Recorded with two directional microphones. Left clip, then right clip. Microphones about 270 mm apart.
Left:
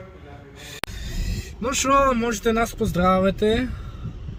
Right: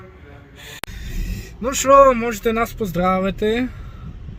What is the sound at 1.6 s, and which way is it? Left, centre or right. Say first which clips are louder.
Speech: right 7 dB; centre.